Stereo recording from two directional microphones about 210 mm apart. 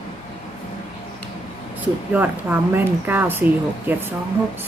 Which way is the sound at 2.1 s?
10° right (ahead or behind).